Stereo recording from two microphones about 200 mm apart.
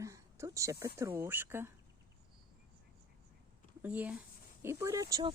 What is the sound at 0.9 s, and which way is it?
Speech, 15° right (ahead or behind).